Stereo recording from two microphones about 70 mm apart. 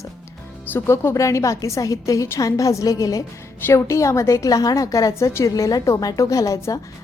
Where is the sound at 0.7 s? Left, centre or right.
Left.